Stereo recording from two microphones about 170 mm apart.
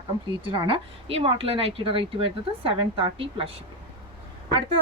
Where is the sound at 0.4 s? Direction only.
30° right (ahead or behind).